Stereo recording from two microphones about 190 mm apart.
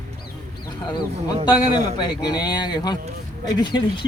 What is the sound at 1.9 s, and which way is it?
Speech, 20° left (ahead or behind).